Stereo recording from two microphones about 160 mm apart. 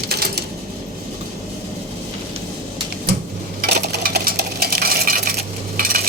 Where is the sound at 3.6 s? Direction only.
80° right.